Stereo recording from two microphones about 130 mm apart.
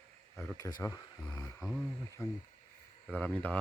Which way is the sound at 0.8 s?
25° left (ahead or behind).